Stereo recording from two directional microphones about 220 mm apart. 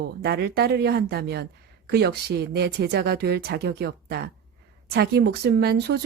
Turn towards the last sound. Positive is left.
turn(degrees=-50)  # may be behind; listen again after turning